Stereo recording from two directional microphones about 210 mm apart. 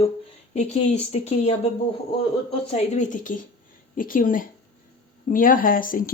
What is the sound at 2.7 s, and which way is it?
Speech, 35° left (ahead or behind).